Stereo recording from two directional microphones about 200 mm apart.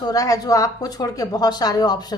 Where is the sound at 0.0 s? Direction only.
20° left (ahead or behind).